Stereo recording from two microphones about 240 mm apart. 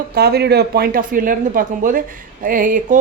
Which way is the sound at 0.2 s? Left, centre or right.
Right.